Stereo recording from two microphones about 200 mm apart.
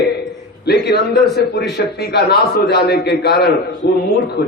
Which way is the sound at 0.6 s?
55° left (ahead or behind).